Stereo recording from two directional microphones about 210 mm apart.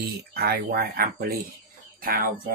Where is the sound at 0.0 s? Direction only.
50° right (ahead or behind).